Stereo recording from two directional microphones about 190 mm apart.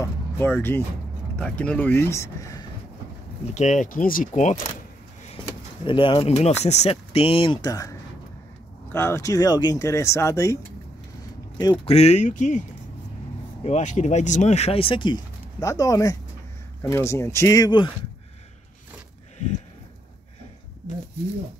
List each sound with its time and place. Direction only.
0.0 s speech: 10° left (ahead or behind)
3.5 s speech: 40° left (ahead or behind)
5.9 s speech: 25° left (ahead or behind)
13.7 s speech: 40° left (ahead or behind)